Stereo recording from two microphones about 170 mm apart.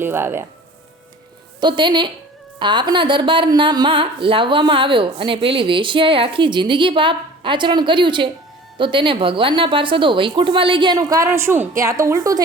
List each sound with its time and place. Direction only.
0.0 s speech: 15° right (ahead or behind)
1.6 s a woman's voice: 25° right (ahead or behind)